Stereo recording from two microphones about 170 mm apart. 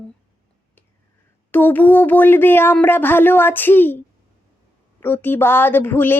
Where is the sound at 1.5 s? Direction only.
10° left (ahead or behind).